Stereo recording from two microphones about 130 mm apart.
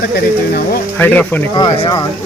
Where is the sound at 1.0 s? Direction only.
15° left (ahead or behind).